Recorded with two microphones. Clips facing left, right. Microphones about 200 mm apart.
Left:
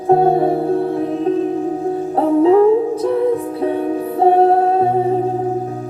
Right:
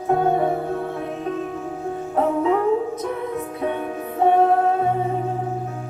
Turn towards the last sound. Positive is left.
turn(degrees=35)  # may be behind; listen again after turning